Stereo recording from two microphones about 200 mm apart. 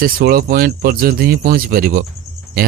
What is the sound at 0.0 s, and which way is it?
Speech, 45° right (ahead or behind).